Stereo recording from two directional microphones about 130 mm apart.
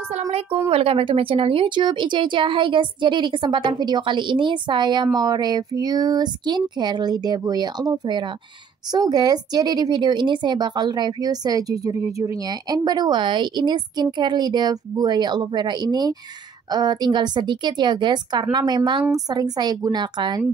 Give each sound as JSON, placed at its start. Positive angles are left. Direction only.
{"t": 0.1, "sound": "a woman's voice", "side_deg": -60}
{"t": 0.7, "sound": "speech", "side_deg": -45}